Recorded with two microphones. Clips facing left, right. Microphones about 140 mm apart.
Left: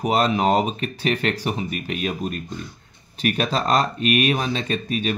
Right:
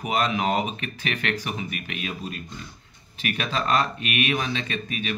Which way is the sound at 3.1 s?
40° left (ahead or behind).